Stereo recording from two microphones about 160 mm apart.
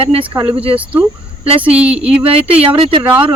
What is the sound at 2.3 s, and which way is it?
Speech, 35° right (ahead or behind).